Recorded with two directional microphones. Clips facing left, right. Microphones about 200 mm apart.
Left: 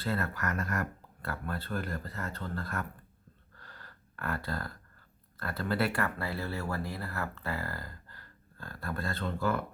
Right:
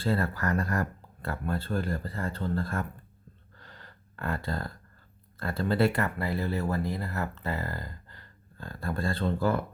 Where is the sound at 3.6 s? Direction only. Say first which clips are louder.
Right 2 dB; 20° right (ahead or behind).